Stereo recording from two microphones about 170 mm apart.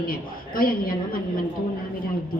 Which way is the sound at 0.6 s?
60° left (ahead or behind).